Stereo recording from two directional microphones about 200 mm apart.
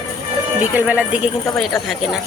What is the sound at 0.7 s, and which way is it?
Speech, 5° right (ahead or behind).